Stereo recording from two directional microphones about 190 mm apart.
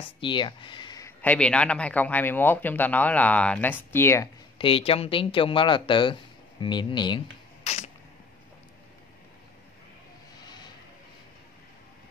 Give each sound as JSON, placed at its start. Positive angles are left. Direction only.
{"t": 0.2, "sound": "speech", "side_deg": 25}
{"t": 4.6, "sound": "speech", "side_deg": 30}
{"t": 7.6, "sound": "a sound", "side_deg": 35}